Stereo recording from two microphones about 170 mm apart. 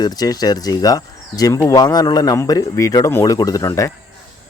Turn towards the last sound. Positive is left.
turn(degrees=20)  # may be behind; listen again after turning